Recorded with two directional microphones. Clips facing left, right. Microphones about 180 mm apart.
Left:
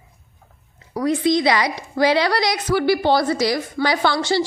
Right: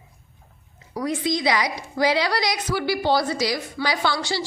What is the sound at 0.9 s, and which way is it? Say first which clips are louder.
A woman's voice: left 6 dB; 65° left (ahead or behind).